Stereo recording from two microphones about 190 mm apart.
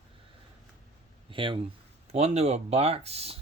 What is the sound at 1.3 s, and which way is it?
Speech, 25° right (ahead or behind).